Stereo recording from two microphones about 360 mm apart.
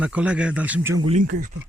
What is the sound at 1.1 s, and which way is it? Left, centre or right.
Speech, right.